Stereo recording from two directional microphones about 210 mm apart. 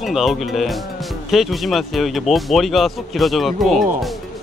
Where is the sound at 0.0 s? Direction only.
Centre (ahead or behind).